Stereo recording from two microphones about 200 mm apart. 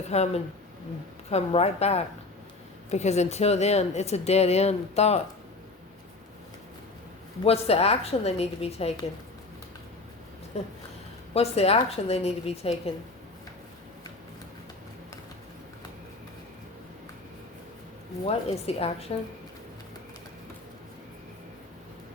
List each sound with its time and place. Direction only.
0.1 s speech: 35° left (ahead or behind)
7.4 s speech: 30° left (ahead or behind)
10.5 s speech: 30° left (ahead or behind)
18.3 s a woman's voice: 30° left (ahead or behind)